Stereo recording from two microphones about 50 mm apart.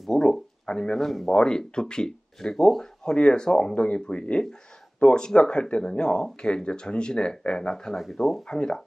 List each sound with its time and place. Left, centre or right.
0.1 s speech: centre